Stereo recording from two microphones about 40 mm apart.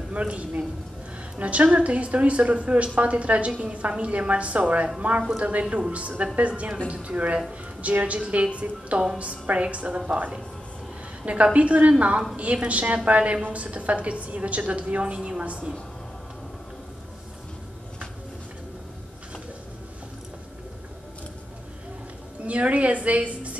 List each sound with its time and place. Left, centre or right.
0.1 s a man's voice: right
11.2 s a woman's voice: right
22.5 s a woman's voice: right